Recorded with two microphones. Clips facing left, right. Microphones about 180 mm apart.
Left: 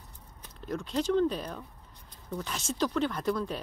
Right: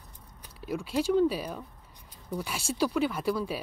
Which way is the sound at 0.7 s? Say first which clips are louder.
Right 2 dB; 10° right (ahead or behind).